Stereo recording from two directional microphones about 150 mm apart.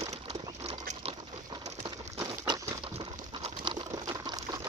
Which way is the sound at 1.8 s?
30° right (ahead or behind).